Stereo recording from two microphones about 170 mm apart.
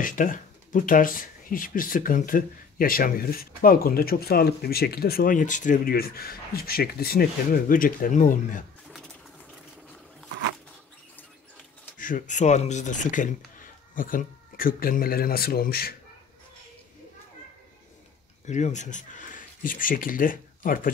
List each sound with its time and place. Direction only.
0.0 s speech: 50° left (ahead or behind)
12.0 s speech: 50° left (ahead or behind); by 15.9 s 65° left (ahead or behind)
18.4 s speech: 45° left (ahead or behind)